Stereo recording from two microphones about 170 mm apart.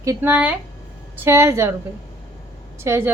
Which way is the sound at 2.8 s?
15° right (ahead or behind).